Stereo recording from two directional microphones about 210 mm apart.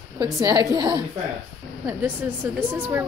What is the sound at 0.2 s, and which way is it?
A woman's voice, 20° right (ahead or behind).